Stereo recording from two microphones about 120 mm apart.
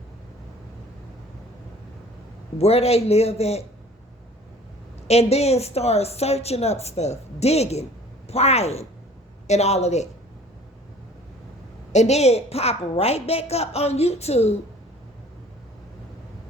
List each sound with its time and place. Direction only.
2.6 s a woman's voice: 60° left (ahead or behind)
5.0 s a woman's voice: 60° left (ahead or behind)
11.9 s a woman's voice: 70° left (ahead or behind)